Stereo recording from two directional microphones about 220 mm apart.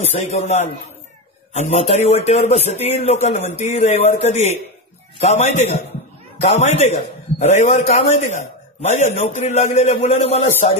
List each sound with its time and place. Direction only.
0.0 s a man's voice: 30° left (ahead or behind)